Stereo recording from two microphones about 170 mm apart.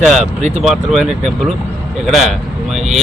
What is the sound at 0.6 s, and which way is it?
A man's voice, centre (ahead or behind).